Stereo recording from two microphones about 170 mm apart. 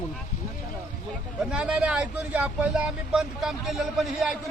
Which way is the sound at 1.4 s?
5° right (ahead or behind).